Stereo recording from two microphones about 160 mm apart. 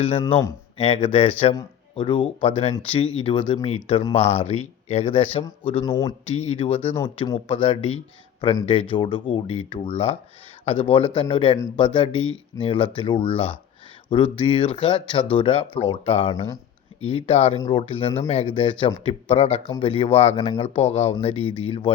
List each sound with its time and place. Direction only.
0.8 s speech: 35° left (ahead or behind)
5.8 s speech: 20° left (ahead or behind)
6.2 s speech: 40° left (ahead or behind)